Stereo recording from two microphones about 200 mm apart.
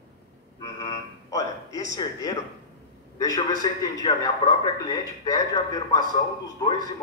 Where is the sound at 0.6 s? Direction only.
20° left (ahead or behind).